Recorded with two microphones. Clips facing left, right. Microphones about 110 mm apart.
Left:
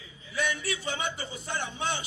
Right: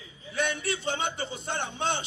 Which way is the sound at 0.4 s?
60° right (ahead or behind).